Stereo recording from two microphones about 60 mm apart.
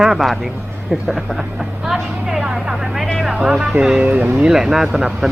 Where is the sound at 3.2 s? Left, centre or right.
Centre.